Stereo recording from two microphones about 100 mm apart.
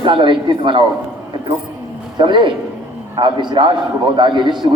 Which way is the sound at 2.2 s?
55° right (ahead or behind).